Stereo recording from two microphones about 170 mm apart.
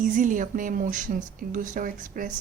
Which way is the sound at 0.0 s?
50° right (ahead or behind).